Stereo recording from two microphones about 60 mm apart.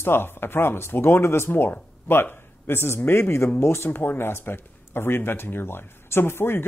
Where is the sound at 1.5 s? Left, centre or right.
Left.